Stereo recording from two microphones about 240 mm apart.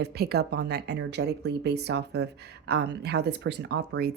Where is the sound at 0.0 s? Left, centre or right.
Right.